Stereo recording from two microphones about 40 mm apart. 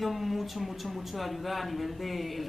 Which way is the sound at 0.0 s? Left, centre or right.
Centre.